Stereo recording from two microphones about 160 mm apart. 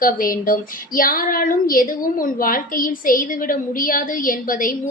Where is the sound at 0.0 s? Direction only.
60° left (ahead or behind).